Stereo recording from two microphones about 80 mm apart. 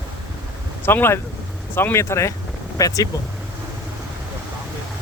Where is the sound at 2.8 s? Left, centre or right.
Left.